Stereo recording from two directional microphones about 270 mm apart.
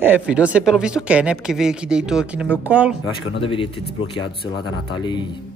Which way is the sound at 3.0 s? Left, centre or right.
Centre.